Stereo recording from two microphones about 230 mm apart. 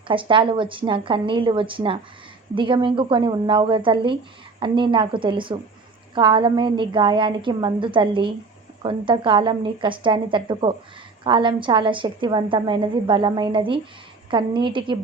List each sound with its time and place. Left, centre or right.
0.1 s a woman's voice: right